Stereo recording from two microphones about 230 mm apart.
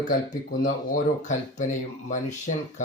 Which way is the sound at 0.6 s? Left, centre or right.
Left.